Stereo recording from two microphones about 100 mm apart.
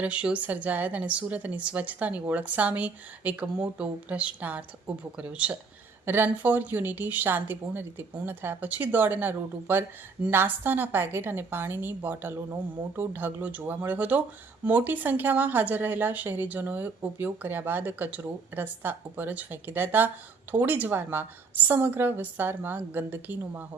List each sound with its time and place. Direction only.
0.0 s speech: 10° right (ahead or behind)